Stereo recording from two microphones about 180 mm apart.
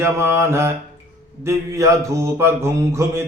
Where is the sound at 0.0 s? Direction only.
15° right (ahead or behind).